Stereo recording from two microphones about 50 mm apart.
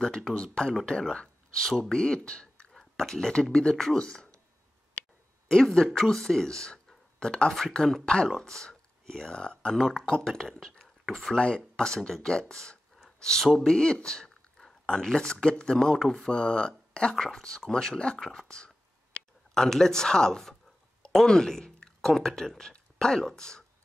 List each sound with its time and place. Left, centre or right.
0.0 s speech: centre
2.7 s a sound: centre
3.5 s speech: centre
5.5 s speech: centre
9.3 s speech: centre
9.8 s speech: centre
12.9 s a sound: centre
13.6 s speech: centre